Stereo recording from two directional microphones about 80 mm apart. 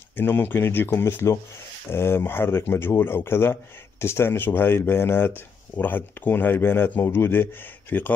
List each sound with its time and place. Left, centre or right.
0.1 s speech: left